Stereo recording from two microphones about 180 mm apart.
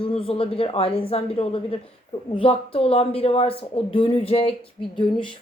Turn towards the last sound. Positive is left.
turn(degrees=25)  # may be behind; listen again after turning